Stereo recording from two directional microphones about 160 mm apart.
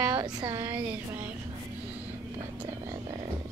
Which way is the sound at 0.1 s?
30° right (ahead or behind).